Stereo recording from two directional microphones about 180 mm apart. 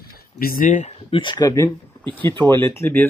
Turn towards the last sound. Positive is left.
turn(degrees=10)  # may be behind; listen again after turning